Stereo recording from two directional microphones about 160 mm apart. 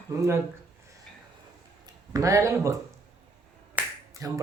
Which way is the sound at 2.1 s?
20° right (ahead or behind).